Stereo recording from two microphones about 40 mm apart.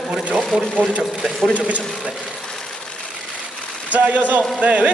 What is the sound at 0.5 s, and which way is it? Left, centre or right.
Speech, right.